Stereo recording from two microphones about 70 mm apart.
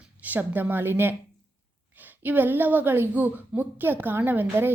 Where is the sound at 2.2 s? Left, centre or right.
Right.